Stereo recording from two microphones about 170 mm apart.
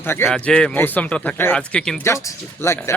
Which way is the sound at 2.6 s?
15° left (ahead or behind).